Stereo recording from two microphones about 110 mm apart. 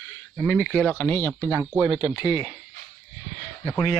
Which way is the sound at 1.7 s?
10° right (ahead or behind).